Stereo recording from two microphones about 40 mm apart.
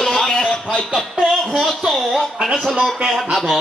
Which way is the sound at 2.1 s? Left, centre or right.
Centre.